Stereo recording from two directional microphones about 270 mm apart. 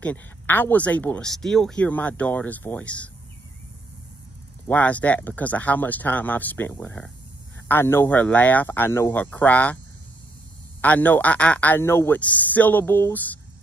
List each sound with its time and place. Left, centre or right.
0.0 s speech: centre
4.6 s speech: centre
10.8 s speech: centre